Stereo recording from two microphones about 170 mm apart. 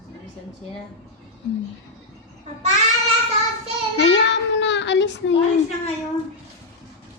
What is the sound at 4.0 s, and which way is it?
Child singing, 90° left.